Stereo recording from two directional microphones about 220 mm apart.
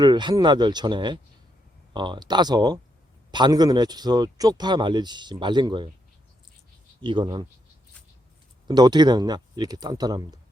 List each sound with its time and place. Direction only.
0.0 s speech: 20° right (ahead or behind)
7.0 s speech: 20° right (ahead or behind)
8.6 s speech: 20° right (ahead or behind)